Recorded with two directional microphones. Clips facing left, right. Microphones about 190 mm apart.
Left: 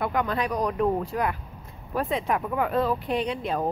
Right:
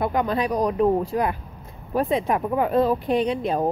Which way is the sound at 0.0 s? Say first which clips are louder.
Right 4 dB; 25° right (ahead or behind).